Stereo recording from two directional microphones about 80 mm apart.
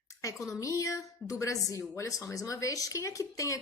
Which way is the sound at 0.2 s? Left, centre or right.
Left.